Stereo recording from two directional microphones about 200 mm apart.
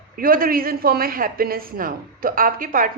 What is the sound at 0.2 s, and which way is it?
A woman's voice, 45° right (ahead or behind).